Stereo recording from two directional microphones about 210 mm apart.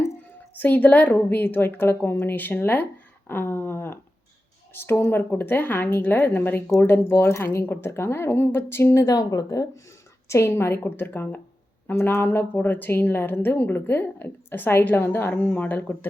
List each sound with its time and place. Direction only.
0.5 s a woman's voice: 10° left (ahead or behind)
3.2 s a sound: 10° left (ahead or behind)
4.7 s a woman's voice: 10° left (ahead or behind)